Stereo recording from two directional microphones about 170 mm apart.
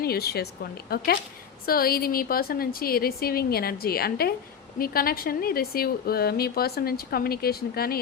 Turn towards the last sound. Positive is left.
turn(degrees=65)  # may be behind; listen again after turning